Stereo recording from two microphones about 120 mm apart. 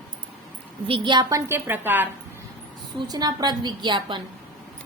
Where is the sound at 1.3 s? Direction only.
20° right (ahead or behind).